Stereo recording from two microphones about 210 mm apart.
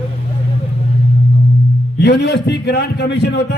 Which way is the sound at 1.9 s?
55° left (ahead or behind).